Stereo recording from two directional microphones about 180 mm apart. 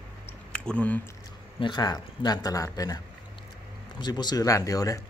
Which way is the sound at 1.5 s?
25° left (ahead or behind).